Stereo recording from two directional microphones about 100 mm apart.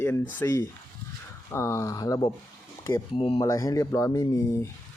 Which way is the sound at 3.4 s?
35° left (ahead or behind).